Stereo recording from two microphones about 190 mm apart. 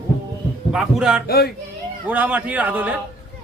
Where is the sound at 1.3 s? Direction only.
55° left (ahead or behind).